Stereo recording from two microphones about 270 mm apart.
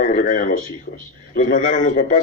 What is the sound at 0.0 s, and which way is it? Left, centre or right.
Speech, left.